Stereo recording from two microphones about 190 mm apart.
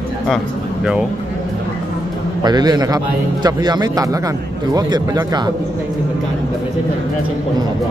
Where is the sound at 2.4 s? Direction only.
20° right (ahead or behind).